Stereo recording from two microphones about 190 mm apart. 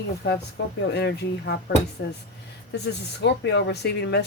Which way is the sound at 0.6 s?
65° left (ahead or behind).